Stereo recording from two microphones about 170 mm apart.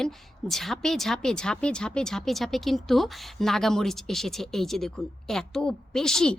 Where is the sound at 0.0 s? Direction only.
Centre (ahead or behind).